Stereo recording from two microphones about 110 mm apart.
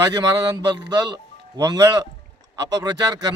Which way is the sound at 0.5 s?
35° right (ahead or behind).